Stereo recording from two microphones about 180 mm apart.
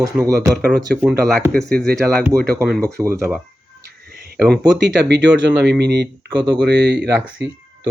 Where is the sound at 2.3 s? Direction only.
20° right (ahead or behind).